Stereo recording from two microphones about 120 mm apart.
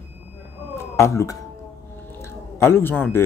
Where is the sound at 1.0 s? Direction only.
25° left (ahead or behind).